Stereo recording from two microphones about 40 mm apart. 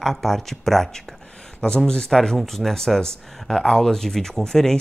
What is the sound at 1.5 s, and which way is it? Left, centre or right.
Speech, left.